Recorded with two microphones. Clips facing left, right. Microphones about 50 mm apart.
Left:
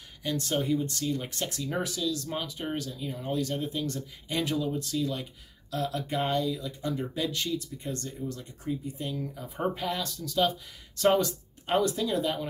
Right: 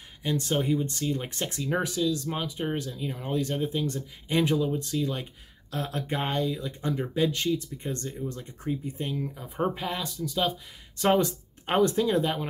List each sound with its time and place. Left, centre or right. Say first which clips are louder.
0.2 s speech: right 2 dB; right
11.1 s speech: right 2 dB; right